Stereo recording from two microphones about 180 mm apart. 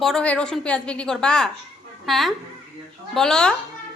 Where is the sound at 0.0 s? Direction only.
5° left (ahead or behind).